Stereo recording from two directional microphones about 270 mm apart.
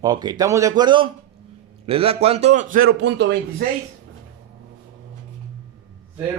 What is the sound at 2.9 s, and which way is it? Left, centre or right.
Speech, right.